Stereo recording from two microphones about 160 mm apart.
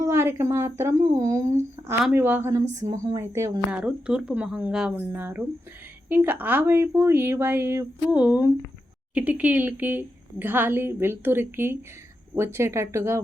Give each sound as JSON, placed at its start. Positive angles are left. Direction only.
{"t": 0.0, "sound": "a woman's voice", "side_deg": -15}
{"t": 3.7, "sound": "a woman's voice", "side_deg": -5}